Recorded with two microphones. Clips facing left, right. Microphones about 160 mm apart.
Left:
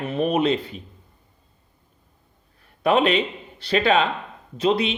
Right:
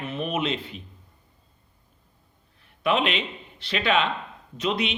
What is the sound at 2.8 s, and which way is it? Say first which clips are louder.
Speech: left 5 dB; 40° left (ahead or behind).